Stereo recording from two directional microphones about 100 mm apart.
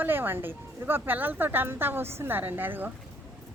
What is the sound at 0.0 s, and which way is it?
Speech, 20° right (ahead or behind).